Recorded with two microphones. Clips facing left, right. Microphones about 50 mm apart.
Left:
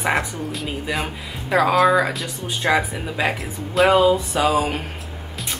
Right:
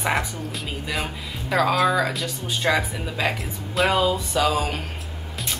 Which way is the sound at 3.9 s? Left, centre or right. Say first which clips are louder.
Left 7 dB; centre.